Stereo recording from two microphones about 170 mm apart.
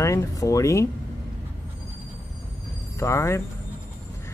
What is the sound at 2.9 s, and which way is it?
Speech, 15° left (ahead or behind).